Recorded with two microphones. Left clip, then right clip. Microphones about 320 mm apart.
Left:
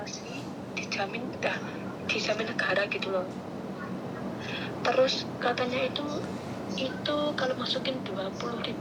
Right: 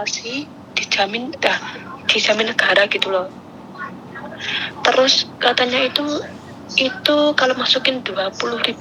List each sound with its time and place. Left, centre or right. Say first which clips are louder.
0.0 s a woman's voice: right 14 dB; right
4.4 s a woman's voice: right 13 dB; right